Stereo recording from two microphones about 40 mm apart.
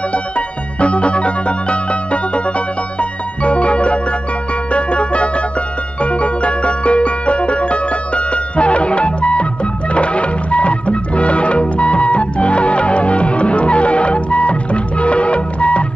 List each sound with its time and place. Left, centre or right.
0.7 s music: left